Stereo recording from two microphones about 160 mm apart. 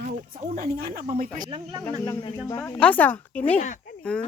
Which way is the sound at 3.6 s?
50° left (ahead or behind).